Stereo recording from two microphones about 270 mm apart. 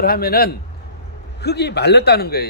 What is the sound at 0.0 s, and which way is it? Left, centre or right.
A man's voice, left.